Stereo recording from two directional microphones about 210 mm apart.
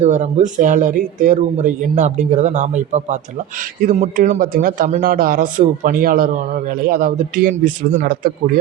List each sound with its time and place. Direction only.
0.0 s a man's voice: 35° right (ahead or behind)